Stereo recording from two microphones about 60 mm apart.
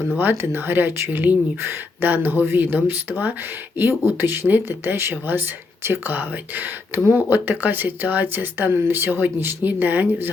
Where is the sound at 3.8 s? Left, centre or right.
Right.